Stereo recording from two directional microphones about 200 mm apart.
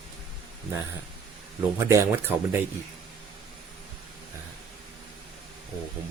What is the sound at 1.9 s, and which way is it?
Speech, 15° right (ahead or behind).